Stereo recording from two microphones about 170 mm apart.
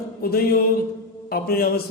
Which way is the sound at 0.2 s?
65° left (ahead or behind).